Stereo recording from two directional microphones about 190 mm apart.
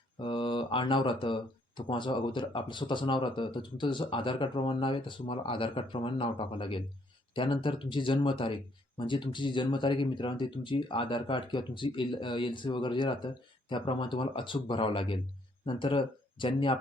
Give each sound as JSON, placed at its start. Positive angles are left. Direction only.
{"t": 0.2, "sound": "speech", "side_deg": 25}